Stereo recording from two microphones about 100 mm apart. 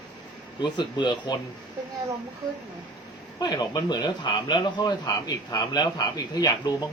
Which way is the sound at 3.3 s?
40° left (ahead or behind).